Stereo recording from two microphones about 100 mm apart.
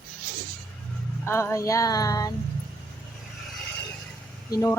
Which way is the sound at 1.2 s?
25° left (ahead or behind).